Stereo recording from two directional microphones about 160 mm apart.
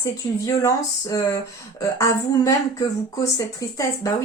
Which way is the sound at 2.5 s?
20° left (ahead or behind).